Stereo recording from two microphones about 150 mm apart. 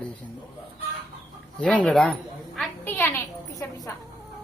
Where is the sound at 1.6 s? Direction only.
10° left (ahead or behind).